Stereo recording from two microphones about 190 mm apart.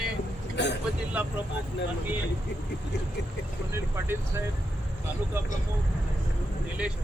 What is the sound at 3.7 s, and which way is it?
Speech, 10° right (ahead or behind).